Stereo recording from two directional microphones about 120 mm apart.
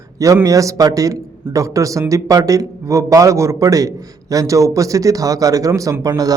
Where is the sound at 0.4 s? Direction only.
25° right (ahead or behind).